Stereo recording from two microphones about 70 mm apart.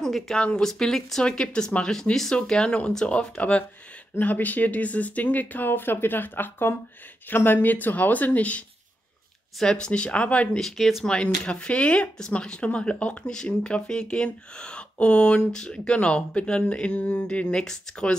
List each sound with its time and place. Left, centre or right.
0.0 s speech: centre
10.6 s speech: centre
11.1 s speech: centre